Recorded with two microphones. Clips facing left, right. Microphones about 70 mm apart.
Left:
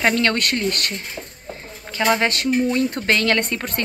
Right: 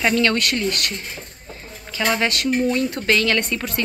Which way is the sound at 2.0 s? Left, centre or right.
Left.